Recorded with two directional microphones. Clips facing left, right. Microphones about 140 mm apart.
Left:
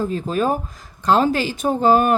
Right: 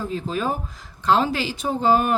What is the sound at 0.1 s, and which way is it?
Speech, 45° left (ahead or behind).